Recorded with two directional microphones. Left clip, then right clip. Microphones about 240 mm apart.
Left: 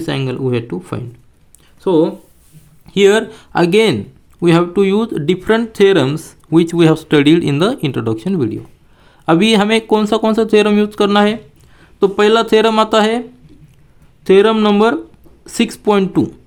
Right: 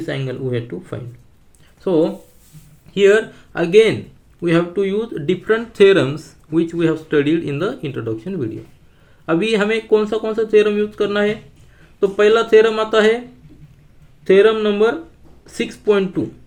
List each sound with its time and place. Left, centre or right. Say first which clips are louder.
0.0 s speech: left 5 dB; left
1.8 s speech: left 3 dB; left
14.3 s speech: left 2 dB; left